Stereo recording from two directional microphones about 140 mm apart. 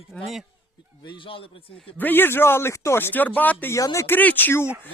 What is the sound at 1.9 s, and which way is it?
Speech, 15° left (ahead or behind).